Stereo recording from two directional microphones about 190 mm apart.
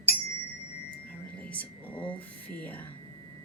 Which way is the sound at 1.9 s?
25° left (ahead or behind).